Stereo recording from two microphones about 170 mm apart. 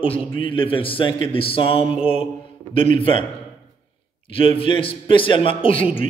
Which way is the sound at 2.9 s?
30° left (ahead or behind).